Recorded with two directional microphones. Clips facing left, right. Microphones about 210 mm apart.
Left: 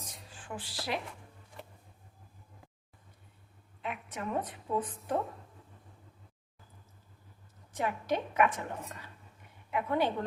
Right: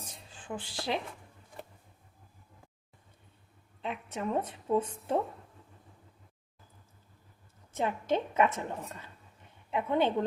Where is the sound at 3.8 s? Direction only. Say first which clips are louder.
Right 3 dB; 25° right (ahead or behind).